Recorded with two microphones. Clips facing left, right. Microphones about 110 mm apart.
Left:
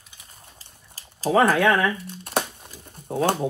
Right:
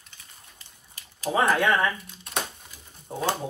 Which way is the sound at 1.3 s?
70° left (ahead or behind).